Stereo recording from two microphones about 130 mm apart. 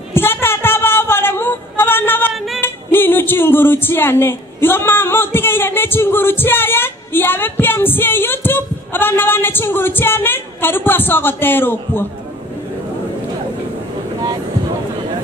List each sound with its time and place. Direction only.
0.1 s female singing: 15° left (ahead or behind)
2.3 s female singing: centre (ahead or behind)
2.6 s speech: 15° left (ahead or behind)